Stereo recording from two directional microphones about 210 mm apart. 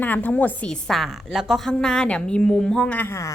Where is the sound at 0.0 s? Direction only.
10° left (ahead or behind).